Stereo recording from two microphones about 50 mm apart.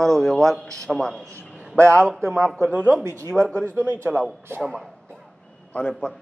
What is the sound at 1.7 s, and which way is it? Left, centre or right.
Speech, right.